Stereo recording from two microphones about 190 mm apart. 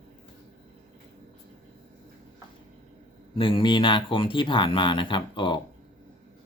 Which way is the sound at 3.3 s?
25° left (ahead or behind).